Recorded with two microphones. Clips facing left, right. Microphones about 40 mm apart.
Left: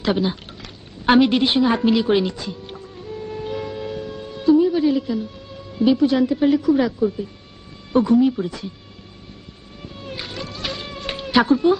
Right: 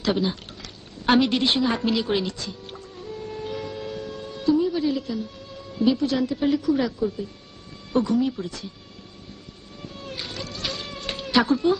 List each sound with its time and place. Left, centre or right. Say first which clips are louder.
0.0 s speech: left 3 dB; centre
1.8 s music: left 6 dB; centre
7.9 s speech: left 6 dB; centre
9.8 s a sound: left 3 dB; centre
11.4 s speech: left 5 dB; centre